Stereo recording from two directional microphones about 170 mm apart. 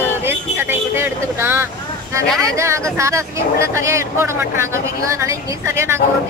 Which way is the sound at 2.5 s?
15° right (ahead or behind).